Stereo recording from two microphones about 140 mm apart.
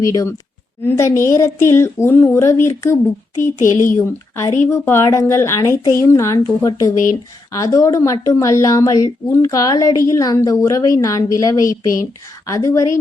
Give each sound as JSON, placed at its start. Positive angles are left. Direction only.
{"t": 0.0, "sound": "a woman's voice", "side_deg": 25}